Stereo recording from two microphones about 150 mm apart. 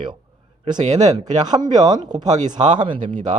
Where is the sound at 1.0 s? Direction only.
25° right (ahead or behind).